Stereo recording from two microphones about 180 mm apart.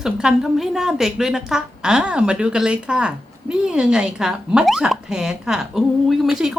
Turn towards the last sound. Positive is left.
turn(degrees=0)  # may be behind; listen again after turning